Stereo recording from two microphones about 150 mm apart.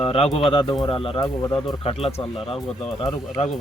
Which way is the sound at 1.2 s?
25° left (ahead or behind).